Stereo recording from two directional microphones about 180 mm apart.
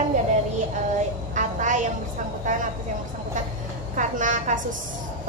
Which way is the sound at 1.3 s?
45° right (ahead or behind).